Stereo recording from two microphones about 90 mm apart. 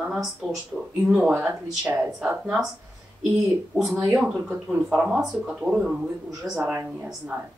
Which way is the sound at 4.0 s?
15° right (ahead or behind).